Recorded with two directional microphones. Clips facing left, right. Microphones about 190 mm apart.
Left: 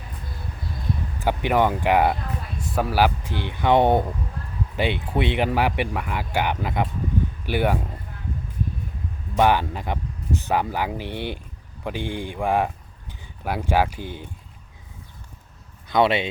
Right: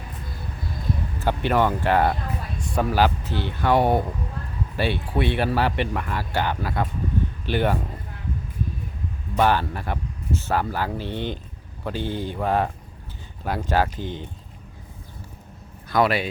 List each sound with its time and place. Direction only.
1.2 s speech: 15° left (ahead or behind)
9.4 s speech: 15° left (ahead or behind)
15.9 s speech: 25° left (ahead or behind)